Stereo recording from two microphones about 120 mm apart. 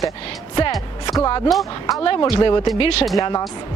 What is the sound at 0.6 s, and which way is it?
Speech, 40° left (ahead or behind).